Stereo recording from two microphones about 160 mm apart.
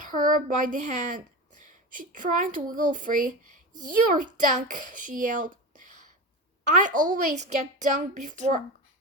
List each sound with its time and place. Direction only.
0.0 s a child's voice: 55° right (ahead or behind)